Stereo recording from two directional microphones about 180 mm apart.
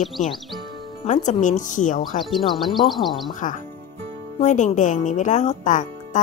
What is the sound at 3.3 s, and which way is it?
A woman's voice, 45° left (ahead or behind).